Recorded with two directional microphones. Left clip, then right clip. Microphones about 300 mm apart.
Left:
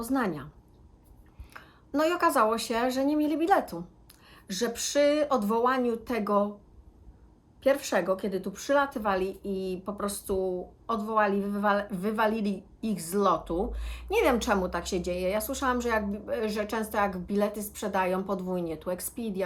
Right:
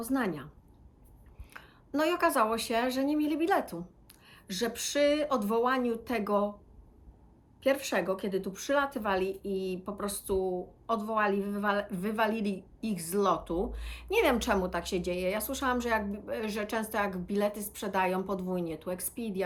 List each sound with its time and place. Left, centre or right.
0.1 s a woman's voice: centre
1.5 s a woman's voice: centre
7.6 s a woman's voice: centre